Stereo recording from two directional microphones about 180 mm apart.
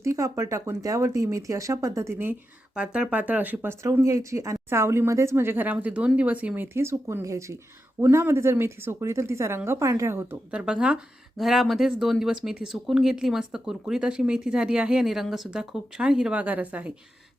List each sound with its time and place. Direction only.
0.0 s a woman's voice: 15° right (ahead or behind)